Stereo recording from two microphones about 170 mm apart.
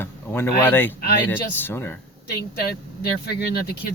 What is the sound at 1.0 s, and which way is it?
Speech, 65° left (ahead or behind).